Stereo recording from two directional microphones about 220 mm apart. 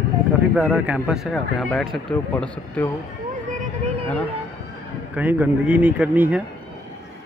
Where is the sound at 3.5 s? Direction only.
30° right (ahead or behind).